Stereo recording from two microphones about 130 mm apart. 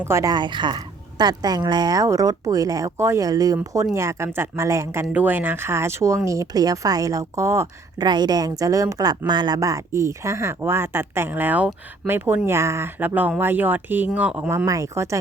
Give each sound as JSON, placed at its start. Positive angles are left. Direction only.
{"t": 0.1, "sound": "a woman's voice", "side_deg": -25}
{"t": 0.3, "sound": "a woman's voice", "side_deg": -35}
{"t": 8.0, "sound": "a woman's voice", "side_deg": -35}